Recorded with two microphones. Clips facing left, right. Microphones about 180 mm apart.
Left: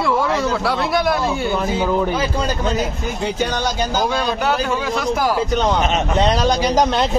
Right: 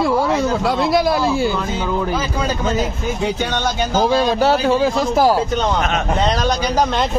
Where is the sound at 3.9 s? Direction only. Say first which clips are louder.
Right 8 dB; 30° right (ahead or behind).